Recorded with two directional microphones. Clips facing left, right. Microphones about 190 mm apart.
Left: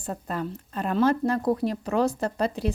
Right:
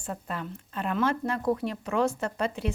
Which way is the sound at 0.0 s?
40° left (ahead or behind).